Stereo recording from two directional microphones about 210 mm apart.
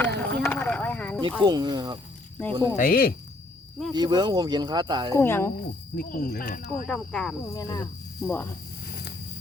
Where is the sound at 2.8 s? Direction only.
45° left (ahead or behind).